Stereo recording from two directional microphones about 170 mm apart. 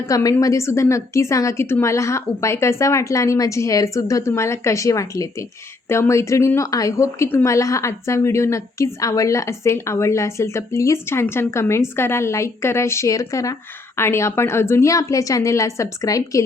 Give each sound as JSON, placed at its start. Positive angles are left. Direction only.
{"t": 0.1, "sound": "a woman's voice", "side_deg": 20}